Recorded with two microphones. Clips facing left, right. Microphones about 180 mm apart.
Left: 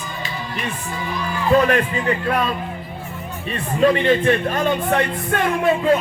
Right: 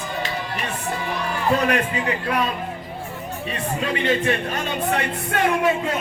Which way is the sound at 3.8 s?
45° left (ahead or behind).